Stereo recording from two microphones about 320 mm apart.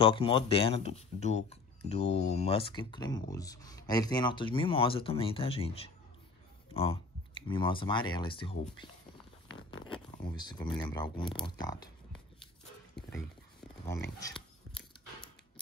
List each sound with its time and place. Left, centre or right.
0.0 s speech: centre
10.1 s speech: centre
14.2 s a sound: centre